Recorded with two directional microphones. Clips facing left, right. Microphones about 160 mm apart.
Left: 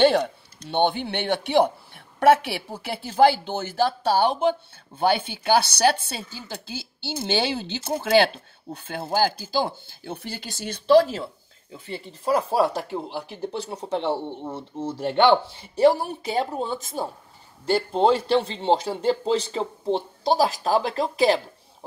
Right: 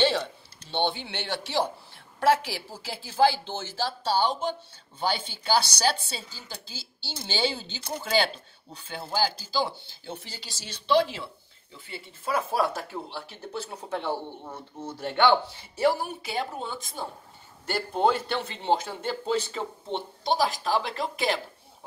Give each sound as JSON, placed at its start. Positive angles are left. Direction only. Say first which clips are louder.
{"t": 0.7, "sound": "a woman's voice", "louder": "left 6 dB", "side_deg": 55}
{"t": 20.3, "sound": "a man's voice", "louder": "left 4 dB", "side_deg": 40}